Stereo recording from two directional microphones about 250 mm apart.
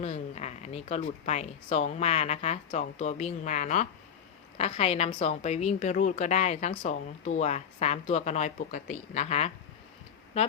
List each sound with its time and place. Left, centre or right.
0.0 s a woman's voice: left